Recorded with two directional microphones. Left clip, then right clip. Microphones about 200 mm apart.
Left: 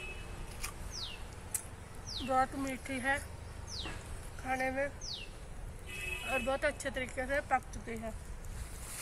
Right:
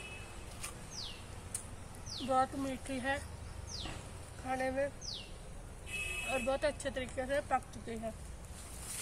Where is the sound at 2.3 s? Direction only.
15° right (ahead or behind).